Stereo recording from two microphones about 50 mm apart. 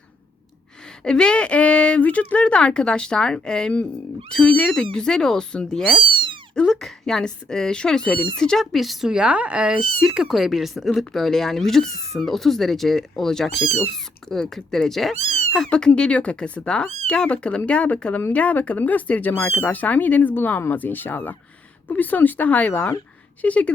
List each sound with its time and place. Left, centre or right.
1.0 s speech: centre
6.5 s cat: centre
6.8 s speech: centre
8.7 s speech: centre
9.0 s speech: centre
15.7 s speech: centre